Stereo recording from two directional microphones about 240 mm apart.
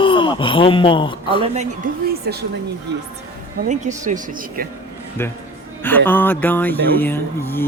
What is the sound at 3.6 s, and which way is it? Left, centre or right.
Speech, right.